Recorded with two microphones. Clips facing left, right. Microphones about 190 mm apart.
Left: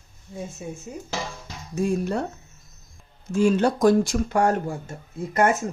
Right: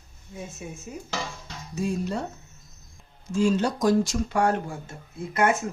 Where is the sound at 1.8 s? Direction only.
55° left (ahead or behind).